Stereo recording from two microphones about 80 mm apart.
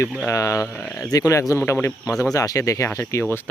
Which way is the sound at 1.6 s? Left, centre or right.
Left.